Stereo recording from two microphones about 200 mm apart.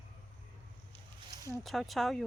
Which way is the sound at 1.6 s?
Centre (ahead or behind).